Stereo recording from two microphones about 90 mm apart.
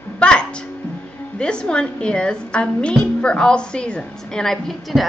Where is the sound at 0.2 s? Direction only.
10° left (ahead or behind).